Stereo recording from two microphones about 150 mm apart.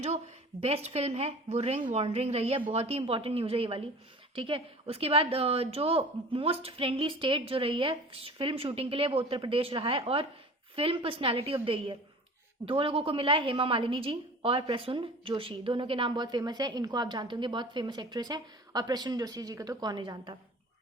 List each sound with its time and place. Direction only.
0.9 s a woman's voice: 45° right (ahead or behind); by 20.3 s 30° right (ahead or behind)